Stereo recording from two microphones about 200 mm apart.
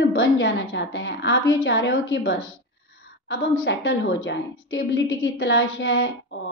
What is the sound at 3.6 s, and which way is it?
A woman's voice, 65° left (ahead or behind).